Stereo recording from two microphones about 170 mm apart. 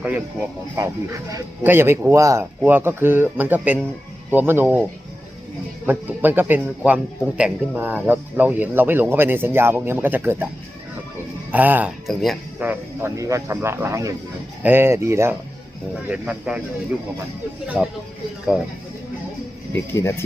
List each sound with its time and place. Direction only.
0.0 s speech: 10° right (ahead or behind)
5.8 s speech: 10° right (ahead or behind)
11.5 s speech: 10° right (ahead or behind)
12.6 s speech: 15° right (ahead or behind)
17.7 s speech: centre (ahead or behind)
19.7 s speech: 15° left (ahead or behind)